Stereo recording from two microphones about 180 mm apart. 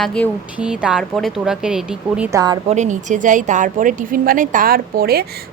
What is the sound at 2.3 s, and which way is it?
Speech, 20° right (ahead or behind).